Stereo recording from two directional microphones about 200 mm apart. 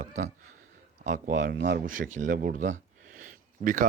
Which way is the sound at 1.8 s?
40° right (ahead or behind).